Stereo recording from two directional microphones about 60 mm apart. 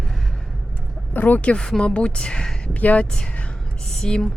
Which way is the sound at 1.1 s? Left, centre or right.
Left.